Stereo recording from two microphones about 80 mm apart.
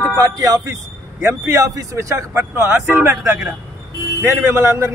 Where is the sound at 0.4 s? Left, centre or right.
Right.